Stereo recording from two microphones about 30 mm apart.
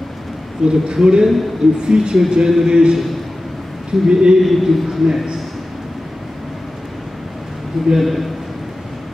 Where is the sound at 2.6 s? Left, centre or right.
Right.